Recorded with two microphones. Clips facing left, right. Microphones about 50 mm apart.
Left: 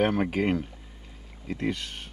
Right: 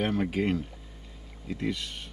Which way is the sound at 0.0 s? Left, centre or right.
Centre.